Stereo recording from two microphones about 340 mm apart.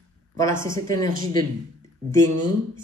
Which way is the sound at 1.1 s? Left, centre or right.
Right.